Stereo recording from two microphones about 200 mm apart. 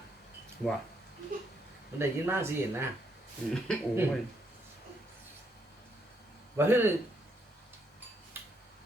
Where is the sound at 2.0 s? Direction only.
10° right (ahead or behind).